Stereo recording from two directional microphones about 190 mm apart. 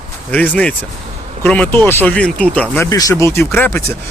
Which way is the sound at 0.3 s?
10° left (ahead or behind).